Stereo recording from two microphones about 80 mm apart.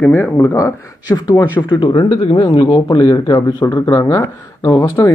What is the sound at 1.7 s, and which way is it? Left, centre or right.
Speech, left.